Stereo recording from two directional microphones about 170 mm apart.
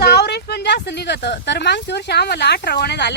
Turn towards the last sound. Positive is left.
turn(degrees=85)